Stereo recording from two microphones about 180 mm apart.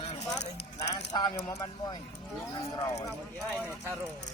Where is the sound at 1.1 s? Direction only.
25° left (ahead or behind).